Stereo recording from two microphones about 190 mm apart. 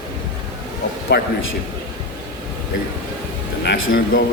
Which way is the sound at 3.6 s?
55° left (ahead or behind).